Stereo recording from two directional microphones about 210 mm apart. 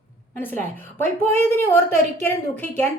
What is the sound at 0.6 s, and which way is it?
A woman's voice, 10° left (ahead or behind).